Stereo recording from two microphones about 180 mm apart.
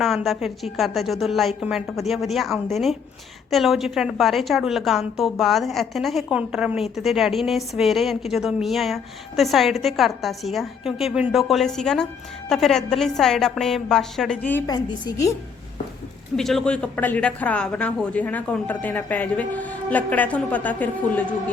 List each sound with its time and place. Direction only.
0.3 s a woman's voice: centre (ahead or behind)
14.7 s a woman's voice: 20° left (ahead or behind)
16.3 s speech: centre (ahead or behind)